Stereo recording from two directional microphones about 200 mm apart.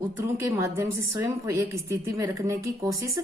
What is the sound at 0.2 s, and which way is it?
A woman's voice, 15° right (ahead or behind).